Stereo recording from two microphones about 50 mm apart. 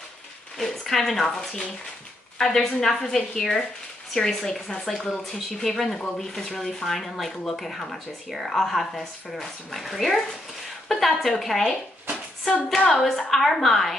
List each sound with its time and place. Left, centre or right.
0.6 s speech: centre
5.9 s speech: centre